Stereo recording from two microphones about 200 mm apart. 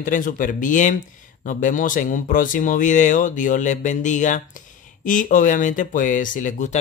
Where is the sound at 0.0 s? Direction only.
40° left (ahead or behind).